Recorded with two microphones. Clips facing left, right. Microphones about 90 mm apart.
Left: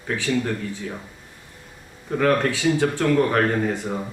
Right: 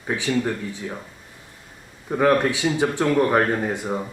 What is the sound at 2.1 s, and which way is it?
Speech, 15° right (ahead or behind).